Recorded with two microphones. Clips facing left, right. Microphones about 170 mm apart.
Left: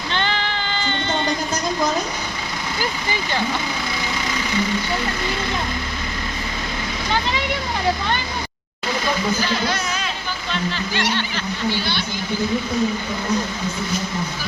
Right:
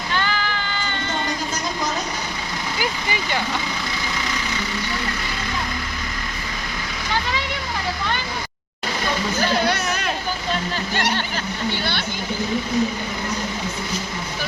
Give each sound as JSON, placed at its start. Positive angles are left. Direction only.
{"t": 0.1, "sound": "music", "side_deg": 25}
{"t": 9.6, "sound": "a sound", "side_deg": -60}
{"t": 10.5, "sound": "speech", "side_deg": -45}